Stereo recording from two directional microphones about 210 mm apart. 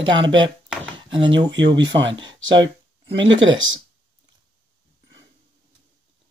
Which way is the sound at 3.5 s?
60° right (ahead or behind).